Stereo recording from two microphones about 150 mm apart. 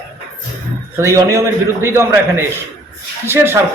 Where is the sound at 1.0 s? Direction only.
20° right (ahead or behind).